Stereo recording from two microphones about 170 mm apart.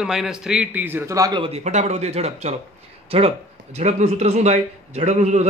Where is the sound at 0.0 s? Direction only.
5° right (ahead or behind).